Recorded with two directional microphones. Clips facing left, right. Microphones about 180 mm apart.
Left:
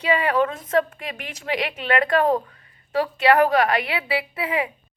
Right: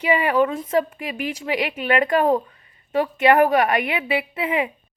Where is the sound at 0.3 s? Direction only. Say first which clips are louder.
Right 3 dB; 15° right (ahead or behind).